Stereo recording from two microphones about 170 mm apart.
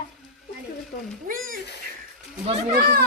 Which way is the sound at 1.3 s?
55° right (ahead or behind).